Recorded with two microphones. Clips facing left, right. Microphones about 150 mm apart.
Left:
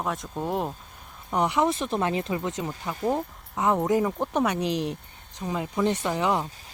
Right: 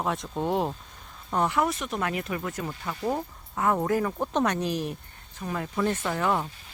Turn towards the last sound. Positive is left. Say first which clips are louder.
# left 1 dB
turn(degrees=15)  # may be behind; listen again after turning